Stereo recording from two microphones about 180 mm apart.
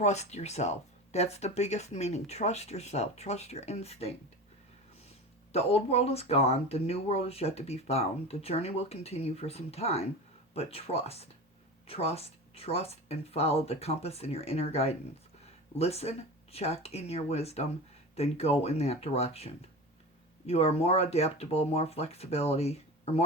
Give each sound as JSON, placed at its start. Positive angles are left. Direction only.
{"t": 0.0, "sound": "speech", "side_deg": 40}
{"t": 5.5, "sound": "speech", "side_deg": 35}
{"t": 20.5, "sound": "speech", "side_deg": 35}